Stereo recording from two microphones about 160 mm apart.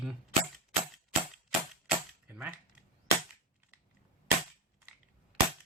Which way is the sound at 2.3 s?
10° right (ahead or behind).